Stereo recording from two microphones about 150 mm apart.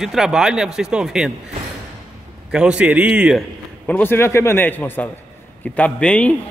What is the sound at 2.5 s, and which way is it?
Speech, 5° right (ahead or behind).